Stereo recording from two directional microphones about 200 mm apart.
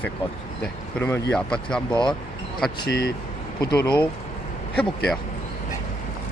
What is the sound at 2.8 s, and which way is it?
Speech, 50° left (ahead or behind).